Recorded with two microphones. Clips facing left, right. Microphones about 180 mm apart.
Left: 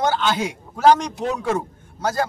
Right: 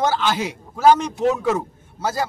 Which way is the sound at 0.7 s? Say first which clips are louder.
Even; 5° right (ahead or behind).